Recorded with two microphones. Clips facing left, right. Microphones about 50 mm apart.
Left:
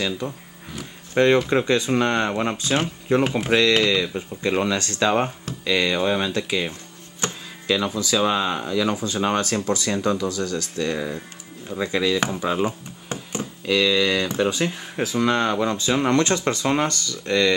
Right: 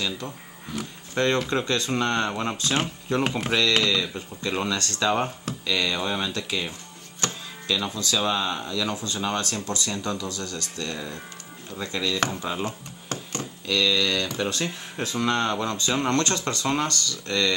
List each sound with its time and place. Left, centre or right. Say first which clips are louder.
0.2 s speech: left 5 dB; centre
3.3 s speech: left 5 dB; centre
4.0 s speech: left 5 dB; left
7.2 s music: left 2 dB; centre
7.7 s speech: left 5 dB; left